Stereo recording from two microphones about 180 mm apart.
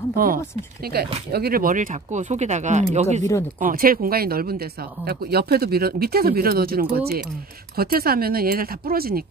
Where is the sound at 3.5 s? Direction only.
50° right (ahead or behind).